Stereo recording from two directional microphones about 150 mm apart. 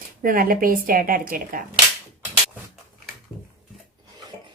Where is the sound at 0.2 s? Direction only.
70° right (ahead or behind).